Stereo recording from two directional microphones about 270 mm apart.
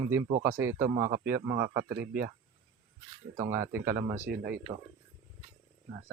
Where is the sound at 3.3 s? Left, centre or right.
Centre.